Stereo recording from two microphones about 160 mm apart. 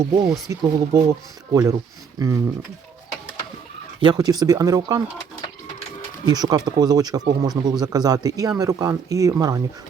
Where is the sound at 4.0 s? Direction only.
25° right (ahead or behind).